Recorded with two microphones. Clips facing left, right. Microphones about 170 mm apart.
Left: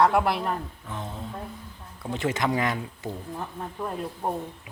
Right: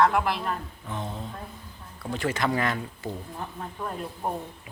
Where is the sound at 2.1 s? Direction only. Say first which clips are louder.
Left 1 dB; 20° left (ahead or behind).